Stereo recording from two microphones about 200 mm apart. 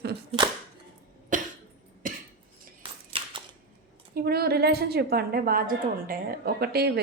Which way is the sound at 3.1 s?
25° right (ahead or behind).